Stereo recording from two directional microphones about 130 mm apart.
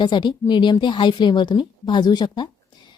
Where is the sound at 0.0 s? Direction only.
35° left (ahead or behind).